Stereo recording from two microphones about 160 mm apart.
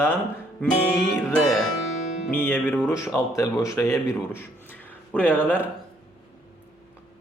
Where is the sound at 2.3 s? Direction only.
15° left (ahead or behind).